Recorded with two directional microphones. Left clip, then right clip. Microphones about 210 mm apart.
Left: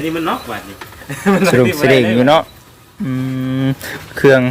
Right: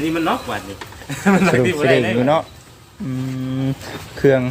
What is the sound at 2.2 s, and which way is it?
Speech, 35° left (ahead or behind).